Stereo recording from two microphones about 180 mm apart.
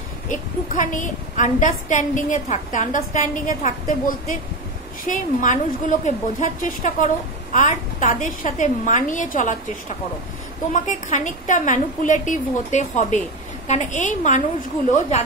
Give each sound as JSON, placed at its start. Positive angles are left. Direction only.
{"t": 0.3, "sound": "a woman's voice", "side_deg": 45}
{"t": 10.7, "sound": "a woman's voice", "side_deg": 45}